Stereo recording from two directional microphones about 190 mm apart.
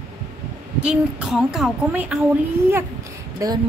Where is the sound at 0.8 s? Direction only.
5° right (ahead or behind).